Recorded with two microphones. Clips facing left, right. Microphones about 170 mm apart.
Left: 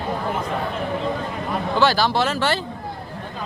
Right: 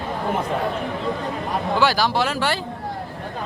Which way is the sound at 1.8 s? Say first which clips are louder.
Left 2 dB; 10° right (ahead or behind).